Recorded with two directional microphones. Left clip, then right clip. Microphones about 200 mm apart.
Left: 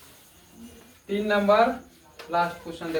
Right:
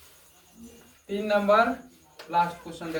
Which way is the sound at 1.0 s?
5° left (ahead or behind).